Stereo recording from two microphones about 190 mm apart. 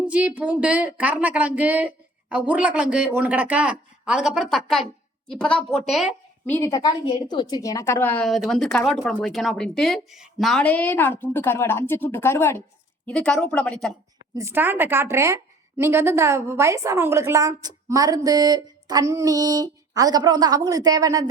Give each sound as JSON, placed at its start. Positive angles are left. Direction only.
{"t": 0.0, "sound": "a woman's voice", "side_deg": -5}
{"t": 6.4, "sound": "a woman's voice", "side_deg": 10}
{"t": 14.3, "sound": "a woman's voice", "side_deg": -10}